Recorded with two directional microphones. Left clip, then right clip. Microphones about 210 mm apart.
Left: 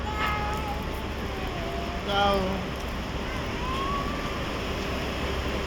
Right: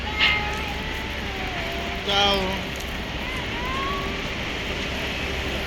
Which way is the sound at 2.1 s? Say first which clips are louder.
Right 3 dB; 60° left (ahead or behind).